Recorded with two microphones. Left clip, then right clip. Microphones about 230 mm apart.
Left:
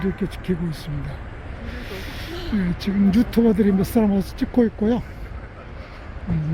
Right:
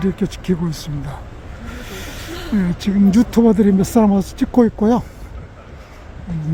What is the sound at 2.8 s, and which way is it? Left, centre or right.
Speech, centre.